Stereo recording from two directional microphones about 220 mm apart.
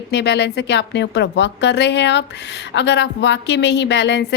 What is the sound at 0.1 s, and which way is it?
A woman's voice, 50° left (ahead or behind).